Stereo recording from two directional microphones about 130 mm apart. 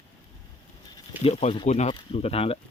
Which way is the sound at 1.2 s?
50° left (ahead or behind).